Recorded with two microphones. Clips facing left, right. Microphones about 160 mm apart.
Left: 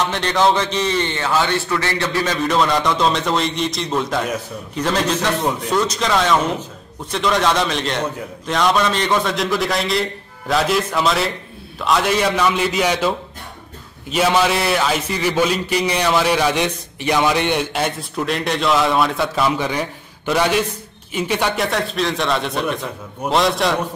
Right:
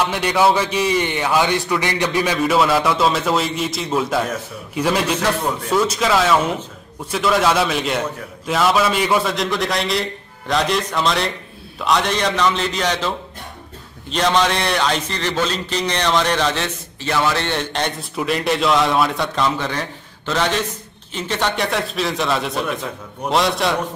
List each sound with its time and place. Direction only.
0.0 s a man's voice: 10° right (ahead or behind); by 13.1 s 10° left (ahead or behind)
14.1 s a man's voice: 5° left (ahead or behind)
18.1 s a man's voice: centre (ahead or behind)
21.6 s a man's voice: centre (ahead or behind)